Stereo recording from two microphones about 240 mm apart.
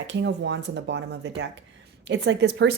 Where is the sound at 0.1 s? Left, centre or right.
Right.